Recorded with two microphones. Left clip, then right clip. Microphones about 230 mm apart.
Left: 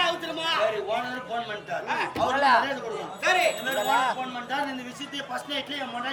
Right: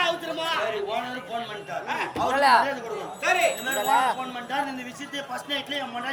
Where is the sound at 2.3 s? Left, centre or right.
Right.